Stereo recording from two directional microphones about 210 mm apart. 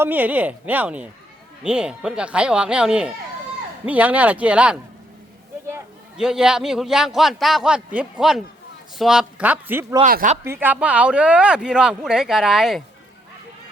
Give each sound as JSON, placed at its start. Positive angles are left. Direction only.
{"t": 0.0, "sound": "a man's voice", "side_deg": -10}
{"t": 10.0, "sound": "speech", "side_deg": -40}
{"t": 10.4, "sound": "speech", "side_deg": -10}